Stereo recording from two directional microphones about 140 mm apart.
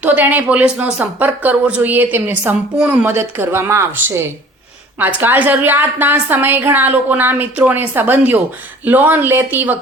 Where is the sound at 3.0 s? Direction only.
15° right (ahead or behind).